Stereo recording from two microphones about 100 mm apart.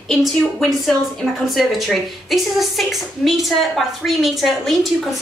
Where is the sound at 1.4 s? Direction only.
Centre (ahead or behind).